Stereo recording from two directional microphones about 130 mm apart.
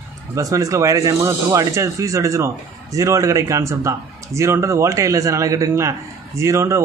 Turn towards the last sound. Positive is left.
turn(degrees=-25)  # may be behind; listen again after turning